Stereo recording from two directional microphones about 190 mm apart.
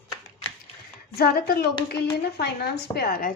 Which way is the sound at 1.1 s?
55° left (ahead or behind).